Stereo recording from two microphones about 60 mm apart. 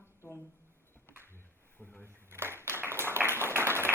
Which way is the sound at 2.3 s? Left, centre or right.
Right.